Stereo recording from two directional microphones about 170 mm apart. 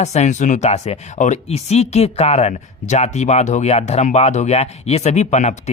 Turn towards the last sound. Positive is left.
turn(degrees=45)  # may be behind; listen again after turning